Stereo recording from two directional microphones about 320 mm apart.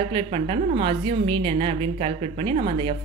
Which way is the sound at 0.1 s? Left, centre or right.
Centre.